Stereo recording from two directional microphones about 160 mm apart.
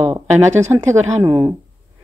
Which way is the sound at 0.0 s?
20° right (ahead or behind).